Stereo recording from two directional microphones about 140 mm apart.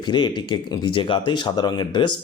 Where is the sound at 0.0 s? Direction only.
35° left (ahead or behind).